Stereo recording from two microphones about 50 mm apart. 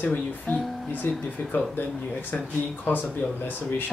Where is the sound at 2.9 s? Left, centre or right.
Left.